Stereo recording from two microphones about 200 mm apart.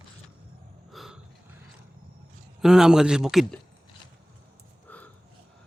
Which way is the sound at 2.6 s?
Centre (ahead or behind).